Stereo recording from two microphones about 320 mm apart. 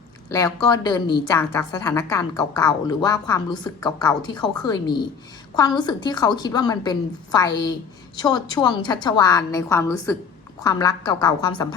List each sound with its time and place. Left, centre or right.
0.3 s a woman's voice: centre